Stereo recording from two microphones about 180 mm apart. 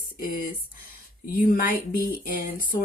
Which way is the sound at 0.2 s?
50° left (ahead or behind).